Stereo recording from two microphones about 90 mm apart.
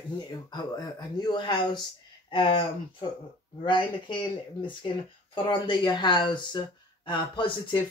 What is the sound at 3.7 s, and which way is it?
Speech, 65° left (ahead or behind).